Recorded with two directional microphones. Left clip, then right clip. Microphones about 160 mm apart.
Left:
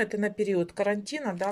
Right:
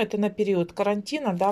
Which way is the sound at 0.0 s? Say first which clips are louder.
Right 3 dB; centre (ahead or behind).